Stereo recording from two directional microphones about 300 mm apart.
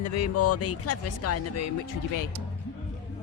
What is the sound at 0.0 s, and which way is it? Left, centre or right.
Speech, left.